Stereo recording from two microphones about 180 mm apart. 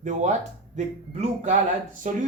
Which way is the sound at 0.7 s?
40° right (ahead or behind).